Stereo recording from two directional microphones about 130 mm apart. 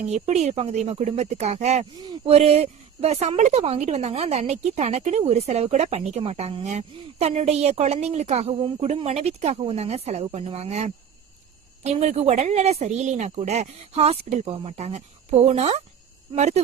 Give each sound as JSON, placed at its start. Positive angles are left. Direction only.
{"t": 0.1, "sound": "a woman's voice", "side_deg": -60}